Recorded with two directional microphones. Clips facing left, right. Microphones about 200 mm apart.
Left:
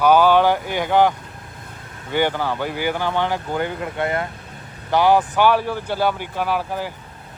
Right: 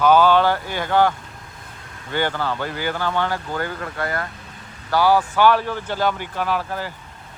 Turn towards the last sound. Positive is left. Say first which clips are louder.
# left 1 dB
turn(degrees=10)  # may be behind; listen again after turning